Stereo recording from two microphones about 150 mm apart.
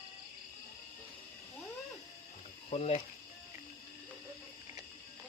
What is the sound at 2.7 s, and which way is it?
Boiling, 45° left (ahead or behind).